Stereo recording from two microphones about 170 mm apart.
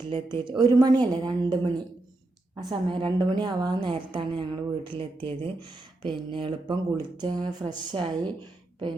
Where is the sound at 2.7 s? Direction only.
30° right (ahead or behind).